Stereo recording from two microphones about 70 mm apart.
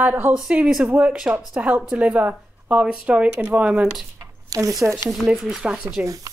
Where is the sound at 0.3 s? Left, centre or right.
Centre.